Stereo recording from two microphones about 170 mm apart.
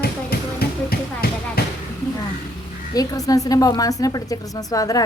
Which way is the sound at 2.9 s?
20° left (ahead or behind).